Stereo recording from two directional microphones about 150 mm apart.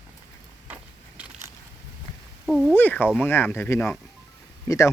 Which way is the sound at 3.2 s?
15° left (ahead or behind).